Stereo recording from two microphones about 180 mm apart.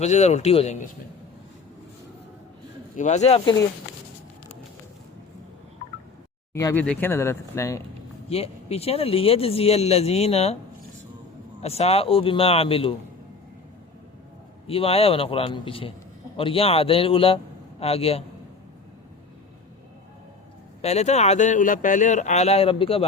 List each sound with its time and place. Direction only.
0.0 s speech: 40° left (ahead or behind)
2.9 s speech: 40° left (ahead or behind)
6.5 s speech: 15° left (ahead or behind)
8.3 s speech: 35° left (ahead or behind)
11.6 s speech: 35° left (ahead or behind)
14.7 s speech: 30° left (ahead or behind)
20.8 s speech: 40° left (ahead or behind)